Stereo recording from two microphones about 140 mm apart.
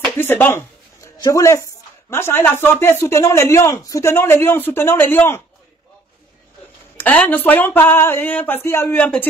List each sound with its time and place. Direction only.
0.2 s speech: 15° left (ahead or behind)
7.0 s speech: 10° left (ahead or behind)